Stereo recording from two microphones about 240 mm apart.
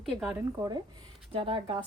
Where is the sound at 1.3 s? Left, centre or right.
Right.